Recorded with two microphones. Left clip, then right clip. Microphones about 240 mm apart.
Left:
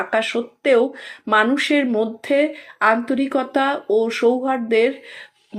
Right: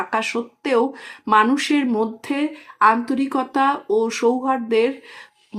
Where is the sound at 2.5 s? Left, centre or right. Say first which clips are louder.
Right 1 dB; centre.